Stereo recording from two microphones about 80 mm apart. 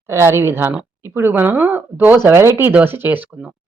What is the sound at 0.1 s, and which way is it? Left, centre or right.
Speech, right.